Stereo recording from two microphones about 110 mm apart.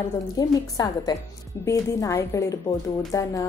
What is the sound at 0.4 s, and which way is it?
A woman's voice, 35° left (ahead or behind).